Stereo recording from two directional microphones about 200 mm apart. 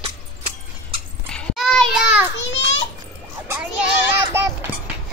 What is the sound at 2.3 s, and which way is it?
Children playing, 65° left (ahead or behind).